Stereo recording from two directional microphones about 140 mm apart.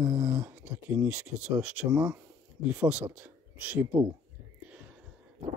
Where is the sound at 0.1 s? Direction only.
30° right (ahead or behind).